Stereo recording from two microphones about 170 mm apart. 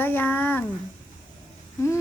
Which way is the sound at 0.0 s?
10° left (ahead or behind).